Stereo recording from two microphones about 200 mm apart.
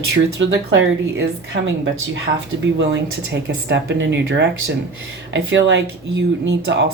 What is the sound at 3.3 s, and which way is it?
Speech, 60° right (ahead or behind).